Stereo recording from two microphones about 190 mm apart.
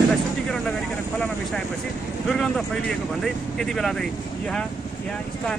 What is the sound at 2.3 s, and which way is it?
Speech, centre (ahead or behind).